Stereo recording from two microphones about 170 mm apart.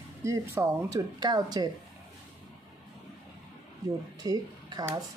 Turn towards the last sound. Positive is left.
turn(degrees=-20)  # may be behind; listen again after turning